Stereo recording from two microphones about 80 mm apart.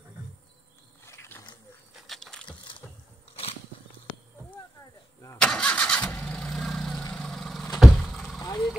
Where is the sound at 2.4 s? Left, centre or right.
Left.